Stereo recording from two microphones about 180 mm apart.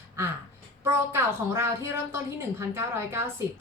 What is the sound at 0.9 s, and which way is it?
Speech, 15° right (ahead or behind).